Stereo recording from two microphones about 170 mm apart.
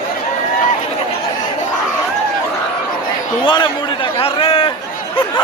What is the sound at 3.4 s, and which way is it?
A man's voice, 30° left (ahead or behind).